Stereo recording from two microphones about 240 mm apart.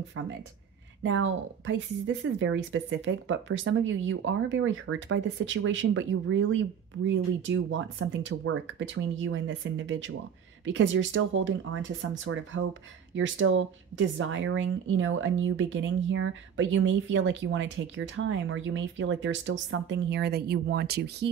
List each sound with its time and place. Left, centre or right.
1.0 s speech: right